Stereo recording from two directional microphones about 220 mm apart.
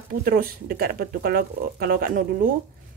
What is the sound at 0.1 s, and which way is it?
Speech, 40° right (ahead or behind).